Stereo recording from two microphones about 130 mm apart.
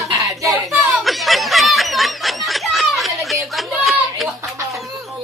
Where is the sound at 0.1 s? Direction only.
25° right (ahead or behind).